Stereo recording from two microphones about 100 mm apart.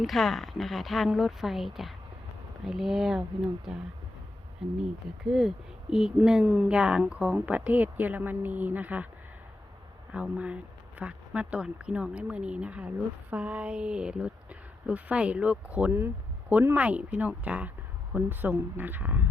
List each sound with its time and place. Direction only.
0.0 s speech: centre (ahead or behind); by 9.0 s 15° right (ahead or behind)
10.1 s speech: 10° right (ahead or behind)